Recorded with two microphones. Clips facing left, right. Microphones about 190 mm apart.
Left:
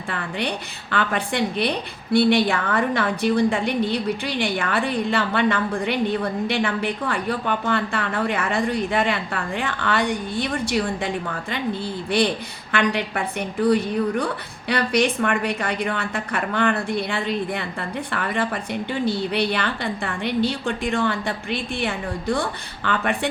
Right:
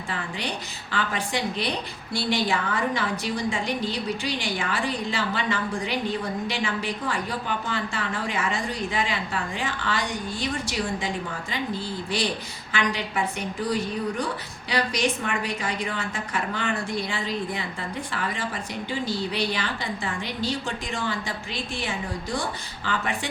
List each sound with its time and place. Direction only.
0.1 s a woman's voice: 60° left (ahead or behind)